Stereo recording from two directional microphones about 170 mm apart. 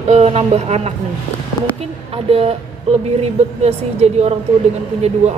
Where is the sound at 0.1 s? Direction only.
35° right (ahead or behind).